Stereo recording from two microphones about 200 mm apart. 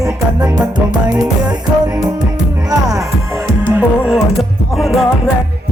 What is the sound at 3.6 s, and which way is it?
Music, centre (ahead or behind).